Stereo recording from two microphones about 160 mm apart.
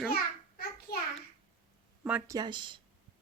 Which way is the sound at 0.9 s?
80° left.